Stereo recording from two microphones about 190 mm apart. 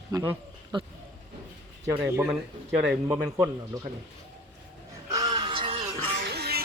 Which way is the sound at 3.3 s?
15° right (ahead or behind).